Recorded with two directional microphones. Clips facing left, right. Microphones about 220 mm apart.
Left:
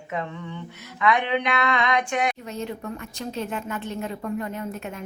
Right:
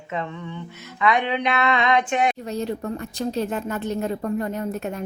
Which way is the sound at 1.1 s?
20° right (ahead or behind).